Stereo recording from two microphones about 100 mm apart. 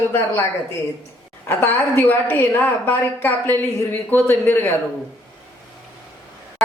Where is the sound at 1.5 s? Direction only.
25° left (ahead or behind).